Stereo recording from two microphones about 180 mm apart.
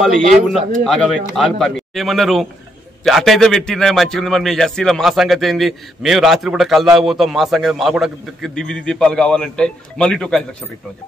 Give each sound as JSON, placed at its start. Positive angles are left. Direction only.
{"t": 0.0, "sound": "a man's voice", "side_deg": 0}